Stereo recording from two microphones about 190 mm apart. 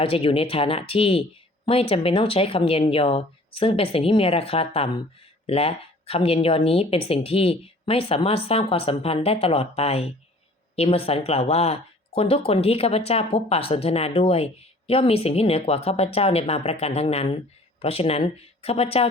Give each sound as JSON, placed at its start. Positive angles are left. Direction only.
{"t": 0.0, "sound": "speech", "side_deg": 30}